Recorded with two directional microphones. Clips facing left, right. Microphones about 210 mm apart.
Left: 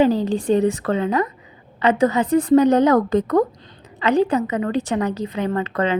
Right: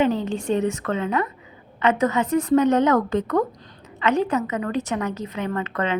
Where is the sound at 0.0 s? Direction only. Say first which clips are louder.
Left 4 dB; 35° left (ahead or behind).